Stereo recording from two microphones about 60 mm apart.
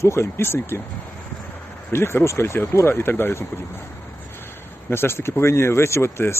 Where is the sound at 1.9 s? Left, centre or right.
Left.